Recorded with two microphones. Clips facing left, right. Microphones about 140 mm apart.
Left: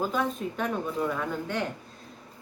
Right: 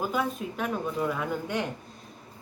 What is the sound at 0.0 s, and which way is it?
Speech, 10° right (ahead or behind).